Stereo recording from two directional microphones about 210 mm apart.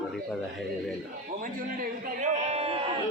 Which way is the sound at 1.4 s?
40° right (ahead or behind).